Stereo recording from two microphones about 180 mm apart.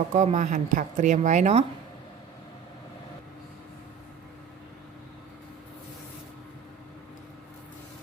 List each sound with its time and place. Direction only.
0.1 s speech: 40° right (ahead or behind)